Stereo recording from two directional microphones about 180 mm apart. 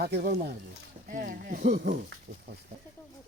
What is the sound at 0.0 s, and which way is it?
Speech, 60° right (ahead or behind).